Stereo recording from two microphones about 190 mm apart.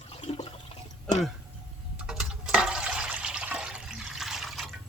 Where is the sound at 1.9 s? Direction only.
5° right (ahead or behind).